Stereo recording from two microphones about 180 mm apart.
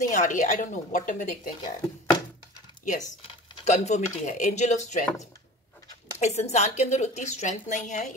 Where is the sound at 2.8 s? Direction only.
45° left (ahead or behind).